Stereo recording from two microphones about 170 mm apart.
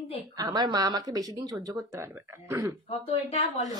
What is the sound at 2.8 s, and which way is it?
Speech, 35° left (ahead or behind).